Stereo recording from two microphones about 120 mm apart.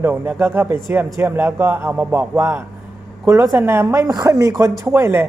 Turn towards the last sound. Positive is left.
turn(degrees=-20)  # may be behind; listen again after turning